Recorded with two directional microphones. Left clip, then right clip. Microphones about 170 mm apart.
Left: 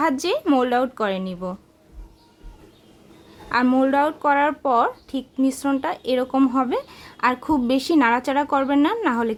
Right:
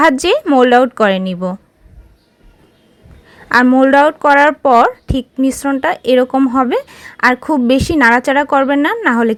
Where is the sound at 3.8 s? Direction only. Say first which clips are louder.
Right 10 dB; 30° right (ahead or behind).